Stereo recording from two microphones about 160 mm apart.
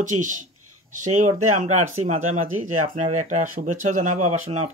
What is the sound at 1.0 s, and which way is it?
Speech, 50° right (ahead or behind).